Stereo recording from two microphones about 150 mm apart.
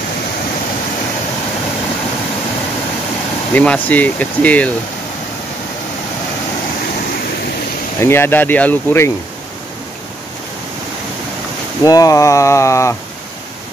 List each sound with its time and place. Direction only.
3.5 s speech: 10° left (ahead or behind)
8.0 s speech: 15° left (ahead or behind)
11.8 s speech: 25° left (ahead or behind)